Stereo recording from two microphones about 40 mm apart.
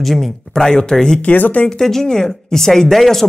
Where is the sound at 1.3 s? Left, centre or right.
Left.